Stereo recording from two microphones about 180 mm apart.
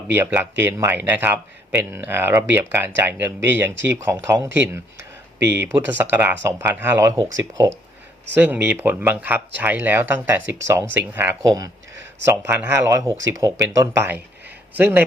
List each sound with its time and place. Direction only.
0.1 s speech: 10° right (ahead or behind)
8.4 s speech: 10° right (ahead or behind)